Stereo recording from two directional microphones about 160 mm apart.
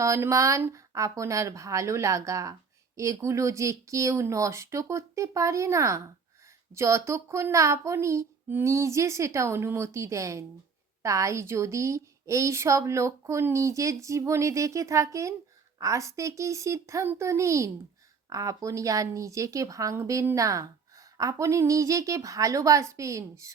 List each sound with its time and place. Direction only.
0.0 s speech: 20° right (ahead or behind)